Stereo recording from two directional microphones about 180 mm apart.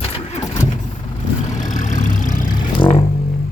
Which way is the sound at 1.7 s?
45° left (ahead or behind).